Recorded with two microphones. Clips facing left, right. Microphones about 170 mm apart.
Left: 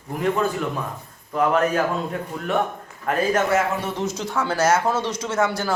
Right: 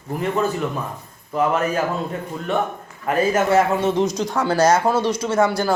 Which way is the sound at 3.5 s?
20° right (ahead or behind).